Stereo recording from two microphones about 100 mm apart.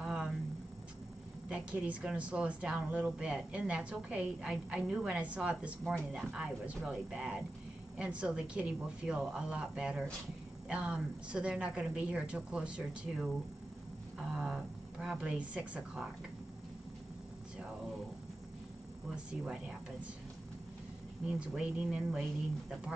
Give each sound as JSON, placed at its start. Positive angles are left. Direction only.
{"t": 0.0, "sound": "a sound", "side_deg": -10}
{"t": 1.5, "sound": "speech", "side_deg": -10}
{"t": 21.3, "sound": "speech", "side_deg": -10}